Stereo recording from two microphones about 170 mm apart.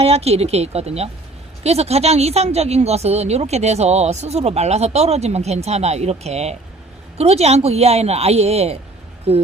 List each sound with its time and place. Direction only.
0.0 s speech: 35° right (ahead or behind)